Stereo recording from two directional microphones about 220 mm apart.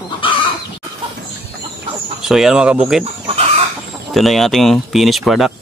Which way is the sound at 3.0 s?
25° right (ahead or behind).